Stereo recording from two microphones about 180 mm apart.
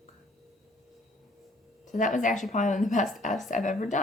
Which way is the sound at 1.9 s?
45° left (ahead or behind).